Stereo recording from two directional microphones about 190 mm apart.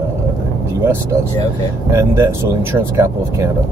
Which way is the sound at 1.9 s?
10° right (ahead or behind).